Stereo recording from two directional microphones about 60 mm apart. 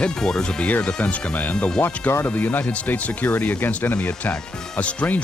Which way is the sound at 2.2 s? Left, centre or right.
Left.